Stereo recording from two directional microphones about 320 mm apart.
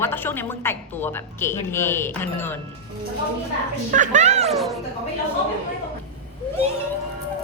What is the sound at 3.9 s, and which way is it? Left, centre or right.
Speech, right.